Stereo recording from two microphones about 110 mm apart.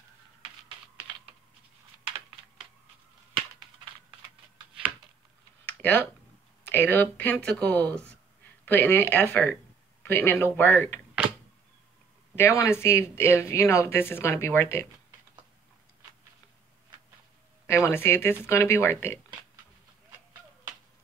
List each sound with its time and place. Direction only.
5.7 s a sound: 15° left (ahead or behind)
6.6 s speech: 15° left (ahead or behind)
12.4 s speech: 25° left (ahead or behind)
17.6 s speech: 20° left (ahead or behind)